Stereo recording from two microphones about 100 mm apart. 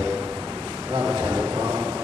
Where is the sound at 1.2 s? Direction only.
30° right (ahead or behind).